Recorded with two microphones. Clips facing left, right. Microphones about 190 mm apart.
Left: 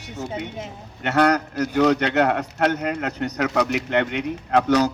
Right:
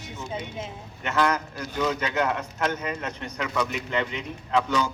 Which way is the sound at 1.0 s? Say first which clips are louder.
Left 6 dB; 70° left (ahead or behind).